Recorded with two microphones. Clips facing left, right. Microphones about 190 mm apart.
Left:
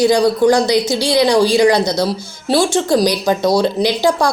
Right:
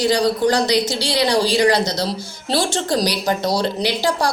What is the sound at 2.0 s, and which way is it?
Speech, 50° left (ahead or behind).